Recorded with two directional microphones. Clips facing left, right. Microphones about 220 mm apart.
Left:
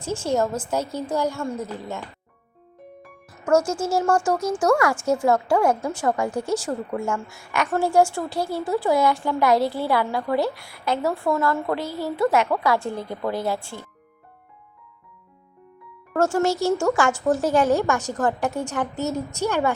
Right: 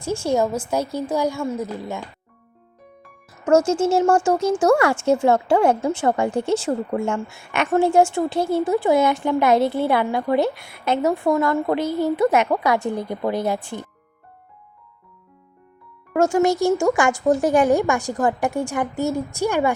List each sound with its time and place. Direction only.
0.0 s speech: 10° right (ahead or behind)
3.4 s speech: 25° right (ahead or behind)
16.1 s speech: 15° right (ahead or behind)